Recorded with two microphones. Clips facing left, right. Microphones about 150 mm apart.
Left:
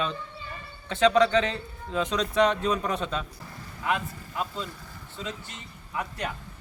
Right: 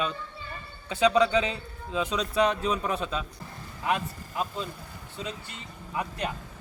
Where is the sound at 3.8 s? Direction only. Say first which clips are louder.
Even; 20° right (ahead or behind).